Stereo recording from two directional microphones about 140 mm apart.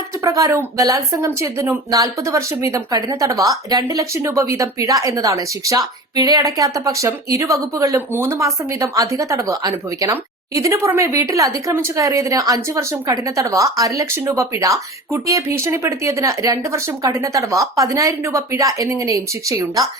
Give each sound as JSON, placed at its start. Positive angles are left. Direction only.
{"t": 0.2, "sound": "a woman's voice", "side_deg": -25}